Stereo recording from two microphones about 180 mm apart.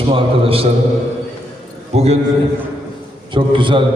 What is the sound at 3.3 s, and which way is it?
Speech, 25° right (ahead or behind).